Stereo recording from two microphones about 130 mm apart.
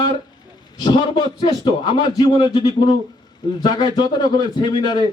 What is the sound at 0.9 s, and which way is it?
A man's voice, 35° left (ahead or behind).